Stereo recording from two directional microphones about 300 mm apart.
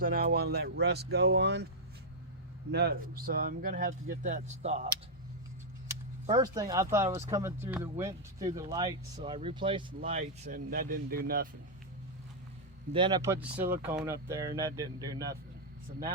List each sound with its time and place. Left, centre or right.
0.0 s speech: right
2.7 s speech: right
6.2 s speech: centre; by 11.4 s right
12.9 s speech: centre